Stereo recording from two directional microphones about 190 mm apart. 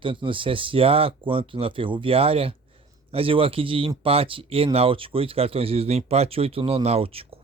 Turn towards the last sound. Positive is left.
turn(degrees=-30)  # may be behind; listen again after turning